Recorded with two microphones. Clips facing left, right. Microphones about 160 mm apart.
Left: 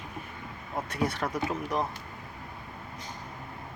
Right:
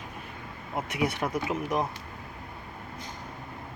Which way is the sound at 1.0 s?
15° right (ahead or behind).